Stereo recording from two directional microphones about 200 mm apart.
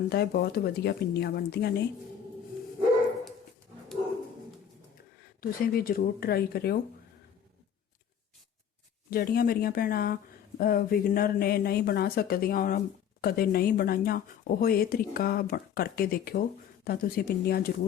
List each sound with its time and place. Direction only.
0.1 s speech: 50° left (ahead or behind)
5.4 s speech: 45° left (ahead or behind)
9.0 s speech: 50° left (ahead or behind)